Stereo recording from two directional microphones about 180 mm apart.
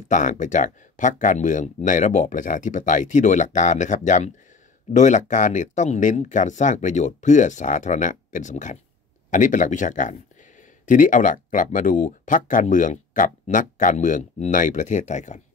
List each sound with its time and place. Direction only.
0.1 s speech: 45° left (ahead or behind)